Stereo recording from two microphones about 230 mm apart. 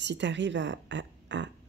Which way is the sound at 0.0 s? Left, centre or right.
Right.